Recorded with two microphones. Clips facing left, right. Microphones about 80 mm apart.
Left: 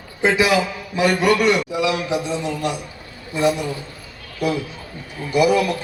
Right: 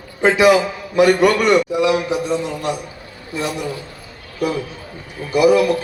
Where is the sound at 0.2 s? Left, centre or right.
Right.